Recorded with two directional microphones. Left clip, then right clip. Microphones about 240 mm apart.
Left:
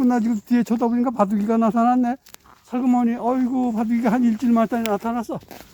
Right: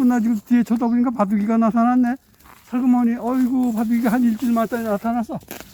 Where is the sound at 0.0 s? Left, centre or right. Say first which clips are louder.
Right 1 dB; centre.